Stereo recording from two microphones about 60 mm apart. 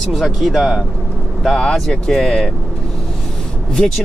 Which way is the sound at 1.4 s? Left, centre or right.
Centre.